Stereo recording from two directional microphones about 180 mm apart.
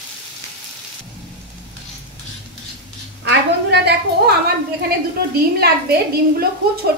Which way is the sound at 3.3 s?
65° right (ahead or behind).